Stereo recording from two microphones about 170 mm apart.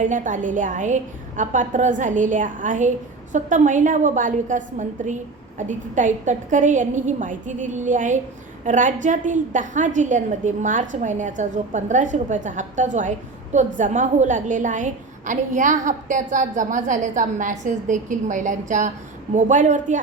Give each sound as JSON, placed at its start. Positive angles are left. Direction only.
{"t": 0.0, "sound": "a woman's voice", "side_deg": -50}